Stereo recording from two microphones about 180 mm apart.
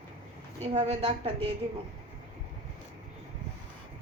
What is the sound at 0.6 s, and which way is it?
Speech, 35° right (ahead or behind).